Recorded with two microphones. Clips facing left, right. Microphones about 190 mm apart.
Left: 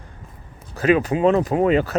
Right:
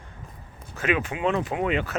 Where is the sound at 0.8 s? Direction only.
35° left (ahead or behind).